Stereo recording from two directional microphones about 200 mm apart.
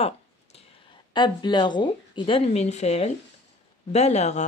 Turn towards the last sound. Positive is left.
turn(degrees=35)  # may be behind; listen again after turning